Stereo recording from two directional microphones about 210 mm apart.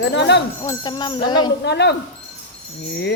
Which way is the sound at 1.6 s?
55° left (ahead or behind).